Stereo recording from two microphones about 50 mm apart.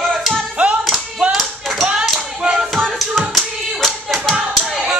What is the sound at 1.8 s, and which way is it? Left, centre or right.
Clapping, centre.